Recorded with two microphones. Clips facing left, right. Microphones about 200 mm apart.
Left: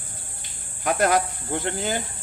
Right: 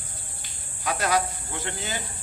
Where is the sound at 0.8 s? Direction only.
50° left (ahead or behind).